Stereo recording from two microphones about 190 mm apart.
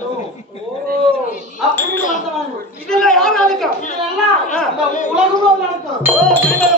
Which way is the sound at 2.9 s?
5° left (ahead or behind).